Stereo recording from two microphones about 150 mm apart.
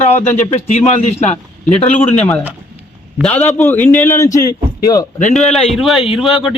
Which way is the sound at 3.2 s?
15° left (ahead or behind).